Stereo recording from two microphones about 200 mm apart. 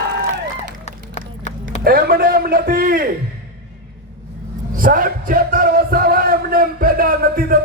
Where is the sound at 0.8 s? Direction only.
35° left (ahead or behind).